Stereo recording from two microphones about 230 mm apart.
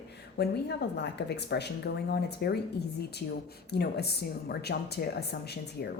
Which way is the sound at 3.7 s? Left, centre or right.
Left.